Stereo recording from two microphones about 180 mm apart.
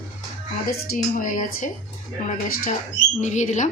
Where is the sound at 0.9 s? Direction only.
50° left (ahead or behind).